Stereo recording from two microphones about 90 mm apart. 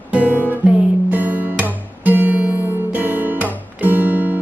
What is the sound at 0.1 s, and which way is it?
Music, 15° right (ahead or behind).